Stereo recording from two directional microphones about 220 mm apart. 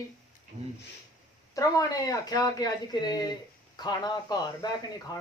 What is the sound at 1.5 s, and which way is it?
Speech, 15° left (ahead or behind).